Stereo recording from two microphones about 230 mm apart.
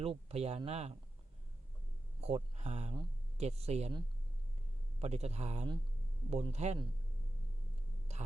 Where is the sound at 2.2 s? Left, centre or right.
Right.